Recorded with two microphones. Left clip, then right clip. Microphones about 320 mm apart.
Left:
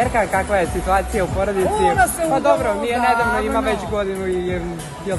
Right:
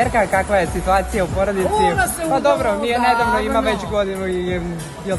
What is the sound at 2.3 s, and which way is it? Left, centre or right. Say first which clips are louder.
Speech: right 4 dB; centre.